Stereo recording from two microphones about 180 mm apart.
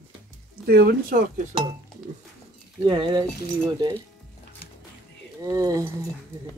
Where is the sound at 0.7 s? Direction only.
60° right (ahead or behind).